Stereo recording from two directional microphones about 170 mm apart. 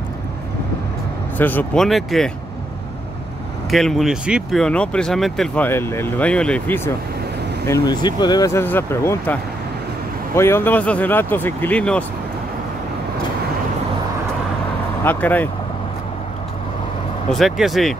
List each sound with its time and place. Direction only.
1.4 s speech: 10° left (ahead or behind)
3.7 s speech: centre (ahead or behind)
5.7 s speech: 15° left (ahead or behind)
7.6 s speech: 20° left (ahead or behind)
15.0 s speech: 10° left (ahead or behind)
17.3 s speech: centre (ahead or behind)